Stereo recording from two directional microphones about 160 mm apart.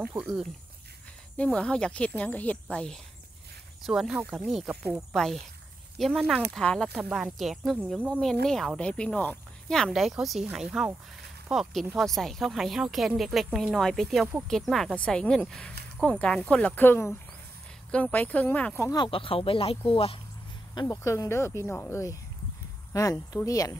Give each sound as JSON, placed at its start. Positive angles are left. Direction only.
{"t": 0.0, "sound": "speech", "side_deg": -10}
{"t": 1.3, "sound": "speech", "side_deg": 5}
{"t": 18.9, "sound": "speech", "side_deg": 30}
{"t": 20.9, "sound": "speech", "side_deg": 20}